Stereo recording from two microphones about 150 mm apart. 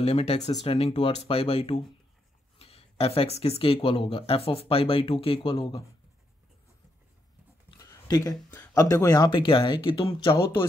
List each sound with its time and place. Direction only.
0.0 s speech: 45° left (ahead or behind)
7.8 s speech: 25° left (ahead or behind)